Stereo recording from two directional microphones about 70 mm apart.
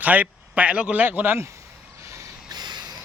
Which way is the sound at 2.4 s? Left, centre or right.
Right.